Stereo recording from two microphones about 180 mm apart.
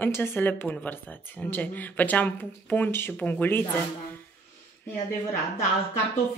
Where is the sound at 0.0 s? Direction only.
10° left (ahead or behind).